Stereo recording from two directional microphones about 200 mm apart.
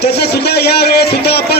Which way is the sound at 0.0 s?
55° left (ahead or behind).